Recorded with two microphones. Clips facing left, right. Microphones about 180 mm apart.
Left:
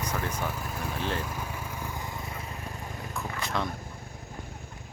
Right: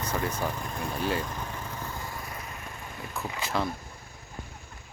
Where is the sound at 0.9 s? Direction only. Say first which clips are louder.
Right 3 dB; 10° right (ahead or behind).